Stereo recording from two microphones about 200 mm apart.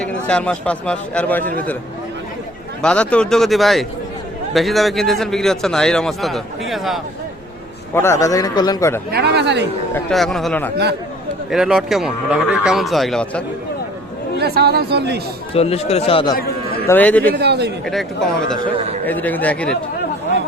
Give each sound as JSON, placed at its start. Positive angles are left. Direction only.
{"t": 0.0, "sound": "a man's voice", "side_deg": 5}
{"t": 2.8, "sound": "a man's voice", "side_deg": 5}
{"t": 7.9, "sound": "a man's voice", "side_deg": 15}
{"t": 9.1, "sound": "speech", "side_deg": -55}
{"t": 10.1, "sound": "a man's voice", "side_deg": 0}
{"t": 14.3, "sound": "speech", "side_deg": -55}
{"t": 15.5, "sound": "speech", "side_deg": 30}
{"t": 16.8, "sound": "a man's voice", "side_deg": 10}
{"t": 17.3, "sound": "speech", "side_deg": -55}
{"t": 17.8, "sound": "a man's voice", "side_deg": 0}